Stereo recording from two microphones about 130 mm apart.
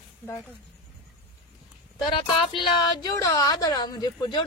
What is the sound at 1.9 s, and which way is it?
Speech, 35° left (ahead or behind).